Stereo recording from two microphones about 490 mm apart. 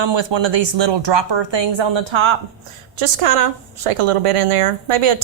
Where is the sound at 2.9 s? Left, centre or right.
Right.